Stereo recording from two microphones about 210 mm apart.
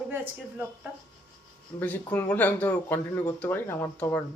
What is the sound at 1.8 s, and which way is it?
Speech, 10° left (ahead or behind).